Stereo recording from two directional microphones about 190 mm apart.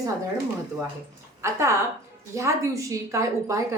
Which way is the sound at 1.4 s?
15° right (ahead or behind).